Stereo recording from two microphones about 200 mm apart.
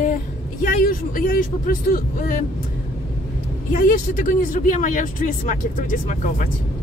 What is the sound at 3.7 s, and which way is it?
Speech, 40° left (ahead or behind).